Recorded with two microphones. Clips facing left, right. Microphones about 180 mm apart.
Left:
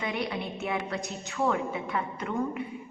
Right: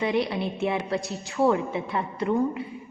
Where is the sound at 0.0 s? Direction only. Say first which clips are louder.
Right 7 dB; 30° right (ahead or behind).